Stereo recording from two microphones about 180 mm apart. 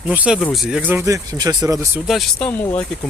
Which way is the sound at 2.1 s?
Centre (ahead or behind).